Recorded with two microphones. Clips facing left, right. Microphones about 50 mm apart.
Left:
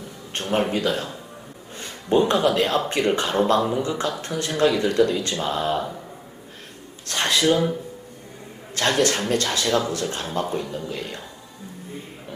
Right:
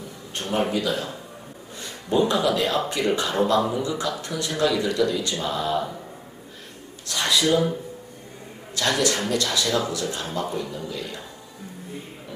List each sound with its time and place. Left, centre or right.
0.3 s a man's voice: left
7.1 s a sound: left
7.5 s speech: left
8.7 s a man's voice: left